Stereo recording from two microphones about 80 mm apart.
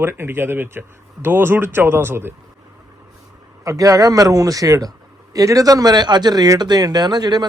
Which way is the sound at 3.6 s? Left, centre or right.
Right.